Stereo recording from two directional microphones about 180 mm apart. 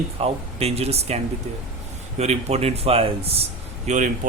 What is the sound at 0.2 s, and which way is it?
Speech, 35° right (ahead or behind).